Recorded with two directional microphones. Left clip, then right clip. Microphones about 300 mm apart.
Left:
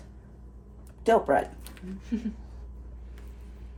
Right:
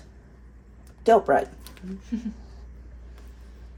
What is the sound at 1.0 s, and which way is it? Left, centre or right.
Speech, right.